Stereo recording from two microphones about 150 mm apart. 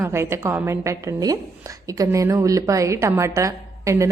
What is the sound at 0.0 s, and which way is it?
A woman's voice, 15° right (ahead or behind).